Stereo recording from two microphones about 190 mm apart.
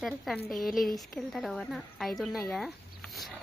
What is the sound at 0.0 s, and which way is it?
Speech, centre (ahead or behind).